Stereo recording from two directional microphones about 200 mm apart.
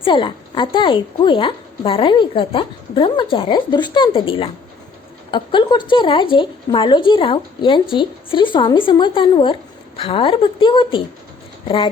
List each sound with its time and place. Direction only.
0.0 s a woman's voice: 25° left (ahead or behind)